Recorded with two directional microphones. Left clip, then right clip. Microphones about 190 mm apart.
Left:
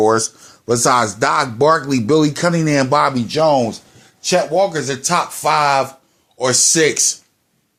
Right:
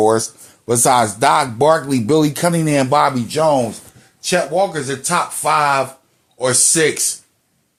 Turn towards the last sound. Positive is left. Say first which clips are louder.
# left 2 dB
turn(degrees=30)  # may be behind; listen again after turning